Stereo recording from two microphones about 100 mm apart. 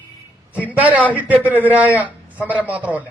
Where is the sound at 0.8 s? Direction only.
15° right (ahead or behind).